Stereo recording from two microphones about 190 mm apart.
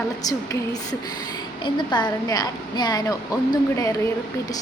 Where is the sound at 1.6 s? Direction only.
25° left (ahead or behind).